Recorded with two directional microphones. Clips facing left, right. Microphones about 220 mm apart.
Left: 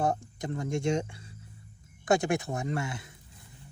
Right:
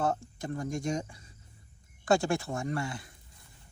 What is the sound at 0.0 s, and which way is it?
Speech, 15° left (ahead or behind).